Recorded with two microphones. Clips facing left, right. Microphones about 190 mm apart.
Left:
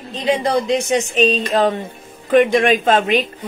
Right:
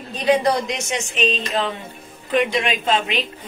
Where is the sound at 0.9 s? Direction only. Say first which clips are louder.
Left 5 dB; 40° left (ahead or behind).